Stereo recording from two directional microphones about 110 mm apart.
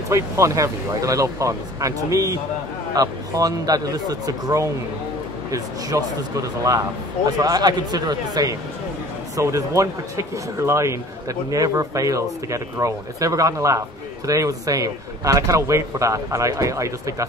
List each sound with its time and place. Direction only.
0.1 s speech: 30° right (ahead or behind)
7.2 s speech: 35° right (ahead or behind)